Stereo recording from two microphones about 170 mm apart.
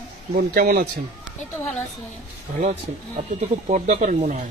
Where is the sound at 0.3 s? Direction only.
60° right (ahead or behind).